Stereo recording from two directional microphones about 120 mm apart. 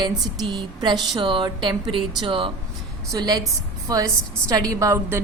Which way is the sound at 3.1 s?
35° right (ahead or behind).